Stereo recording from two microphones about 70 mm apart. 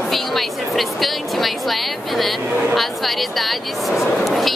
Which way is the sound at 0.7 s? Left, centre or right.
Centre.